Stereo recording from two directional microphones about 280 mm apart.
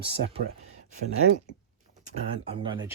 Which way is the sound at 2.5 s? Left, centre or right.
Centre.